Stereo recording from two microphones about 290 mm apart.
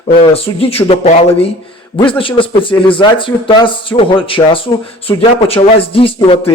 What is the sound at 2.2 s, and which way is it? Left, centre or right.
A man's voice, centre.